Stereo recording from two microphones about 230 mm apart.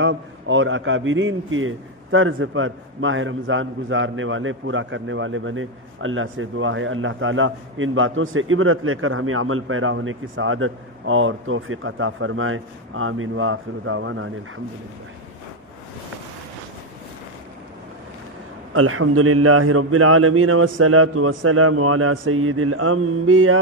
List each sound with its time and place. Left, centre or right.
0.0 s a man's voice: right
18.7 s a man's voice: right